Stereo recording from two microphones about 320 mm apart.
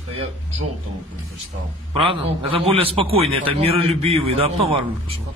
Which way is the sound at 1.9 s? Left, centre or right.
Centre.